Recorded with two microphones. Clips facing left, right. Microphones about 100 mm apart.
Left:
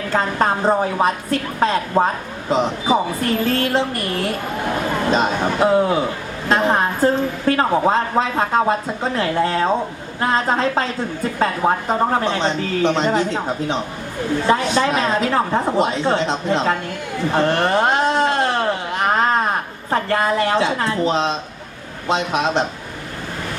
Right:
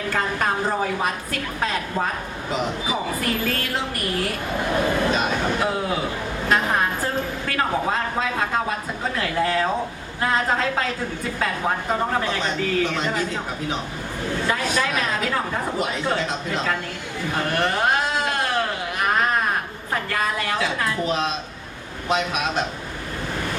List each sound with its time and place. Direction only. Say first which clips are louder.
0.1 s a woman's voice: left 5 dB; 30° left (ahead or behind)
5.1 s a woman's voice: left 4 dB; 30° left (ahead or behind)
17.3 s a sound: left 6 dB; 25° left (ahead or behind)
19.9 s a woman's voice: left 7 dB; 30° left (ahead or behind)